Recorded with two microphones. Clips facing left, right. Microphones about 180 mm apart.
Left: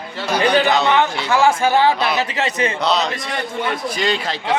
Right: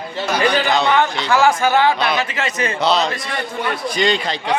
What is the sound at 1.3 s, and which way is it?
Speech, 25° left (ahead or behind).